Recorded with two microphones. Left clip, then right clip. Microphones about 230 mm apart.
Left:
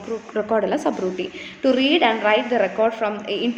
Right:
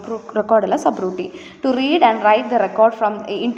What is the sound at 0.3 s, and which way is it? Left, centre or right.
A woman's voice, centre.